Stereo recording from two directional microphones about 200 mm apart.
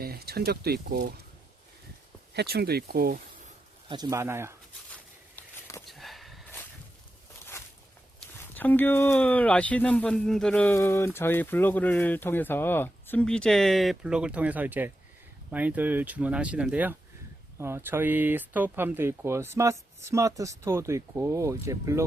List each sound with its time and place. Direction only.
0.0 s speech: 50° right (ahead or behind)
2.3 s speech: 55° right (ahead or behind)
3.8 s speech: 20° right (ahead or behind)
5.4 s walk: 15° left (ahead or behind)
5.8 s sniff: centre (ahead or behind)
8.5 s speech: 10° left (ahead or behind); by 22.0 s 15° right (ahead or behind)